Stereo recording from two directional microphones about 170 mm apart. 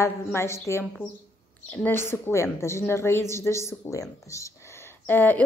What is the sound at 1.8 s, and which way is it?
Speech, 15° left (ahead or behind).